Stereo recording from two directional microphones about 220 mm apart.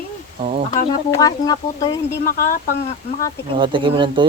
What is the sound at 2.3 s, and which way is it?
Speech, 40° left (ahead or behind).